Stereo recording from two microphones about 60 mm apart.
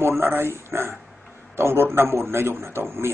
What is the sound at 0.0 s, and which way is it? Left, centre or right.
Speech, right.